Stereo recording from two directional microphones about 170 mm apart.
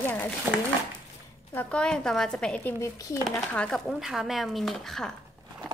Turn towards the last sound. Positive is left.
turn(degrees=0)  # may be behind; listen again after turning